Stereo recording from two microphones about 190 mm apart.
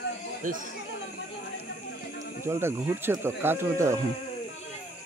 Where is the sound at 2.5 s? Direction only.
15° right (ahead or behind).